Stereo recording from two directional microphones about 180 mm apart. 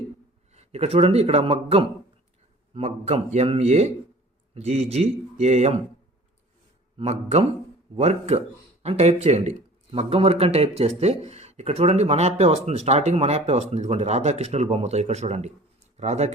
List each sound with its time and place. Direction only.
0.5 s speech: 35° right (ahead or behind)
7.0 s speech: 35° right (ahead or behind)